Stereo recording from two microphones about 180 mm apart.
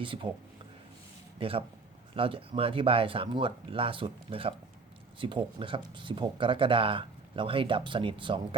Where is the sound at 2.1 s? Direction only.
30° right (ahead or behind).